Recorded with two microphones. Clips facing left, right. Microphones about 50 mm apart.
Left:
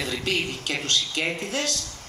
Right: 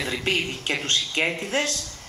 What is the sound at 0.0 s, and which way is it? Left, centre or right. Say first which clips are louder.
Speech: right 1 dB; right.